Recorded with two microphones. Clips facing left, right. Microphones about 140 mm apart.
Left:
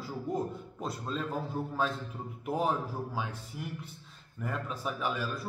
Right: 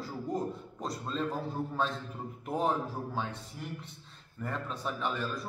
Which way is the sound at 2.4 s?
5° left (ahead or behind).